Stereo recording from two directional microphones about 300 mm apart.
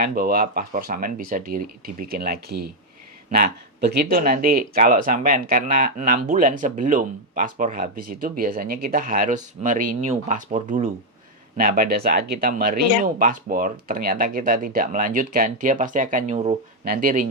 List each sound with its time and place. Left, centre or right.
0.0 s speech: right